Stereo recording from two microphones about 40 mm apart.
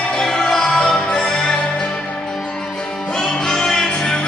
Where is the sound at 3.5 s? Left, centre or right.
Centre.